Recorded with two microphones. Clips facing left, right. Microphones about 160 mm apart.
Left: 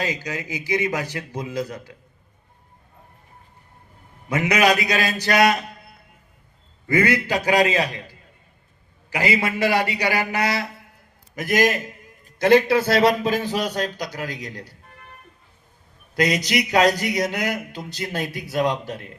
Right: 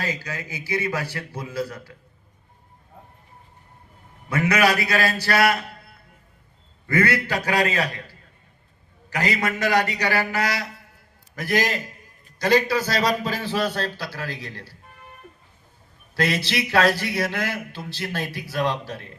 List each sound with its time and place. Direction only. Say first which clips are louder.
0.0 s speech: left 3 dB; 15° left (ahead or behind)
4.3 s speech: left 1 dB; 15° left (ahead or behind)
6.8 s a man's voice: left 2 dB; 15° left (ahead or behind)
16.1 s a man's voice: left 3 dB; 15° left (ahead or behind)